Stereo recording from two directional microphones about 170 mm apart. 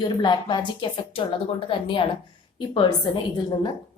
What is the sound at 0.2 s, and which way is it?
A woman's voice, 25° left (ahead or behind).